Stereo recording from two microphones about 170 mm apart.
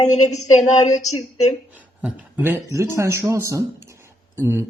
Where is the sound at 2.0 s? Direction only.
10° right (ahead or behind).